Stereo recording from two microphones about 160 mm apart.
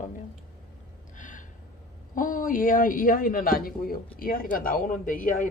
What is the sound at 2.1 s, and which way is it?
A woman's voice, 55° left (ahead or behind).